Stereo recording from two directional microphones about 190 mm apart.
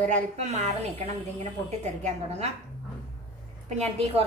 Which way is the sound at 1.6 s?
35° right (ahead or behind).